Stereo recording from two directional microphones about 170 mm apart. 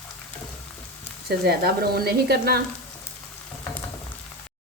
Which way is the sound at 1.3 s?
70° right (ahead or behind).